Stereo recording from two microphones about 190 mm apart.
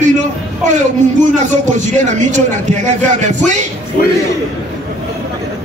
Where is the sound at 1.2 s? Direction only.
40° right (ahead or behind).